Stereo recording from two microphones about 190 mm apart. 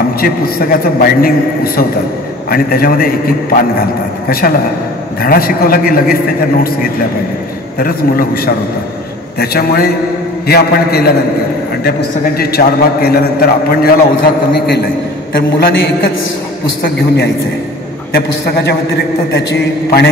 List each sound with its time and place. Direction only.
0.2 s a man's voice: 50° left (ahead or behind)
7.8 s a man's voice: 50° left (ahead or behind)
12.4 s a man's voice: 55° left (ahead or behind)
18.1 s a man's voice: 60° left (ahead or behind)